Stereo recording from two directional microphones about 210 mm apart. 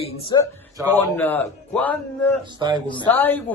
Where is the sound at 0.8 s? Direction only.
10° left (ahead or behind).